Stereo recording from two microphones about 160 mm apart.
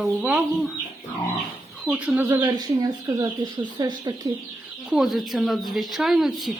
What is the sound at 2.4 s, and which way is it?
Speech, 25° right (ahead or behind).